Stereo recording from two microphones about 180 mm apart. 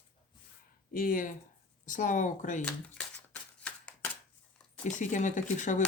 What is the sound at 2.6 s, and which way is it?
Speech, 5° left (ahead or behind).